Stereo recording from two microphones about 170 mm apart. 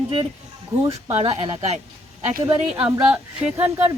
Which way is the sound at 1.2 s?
35° right (ahead or behind).